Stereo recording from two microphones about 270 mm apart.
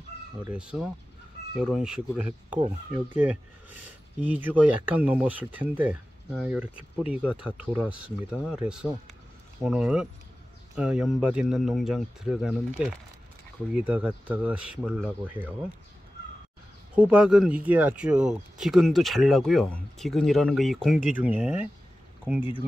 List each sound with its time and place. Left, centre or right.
0.5 s speech: centre
16.9 s speech: centre